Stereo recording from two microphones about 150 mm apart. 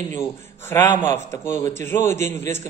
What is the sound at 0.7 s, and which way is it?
Speech, 15° left (ahead or behind).